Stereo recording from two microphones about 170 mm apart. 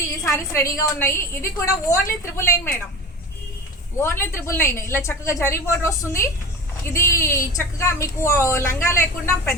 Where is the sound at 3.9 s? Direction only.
15° left (ahead or behind).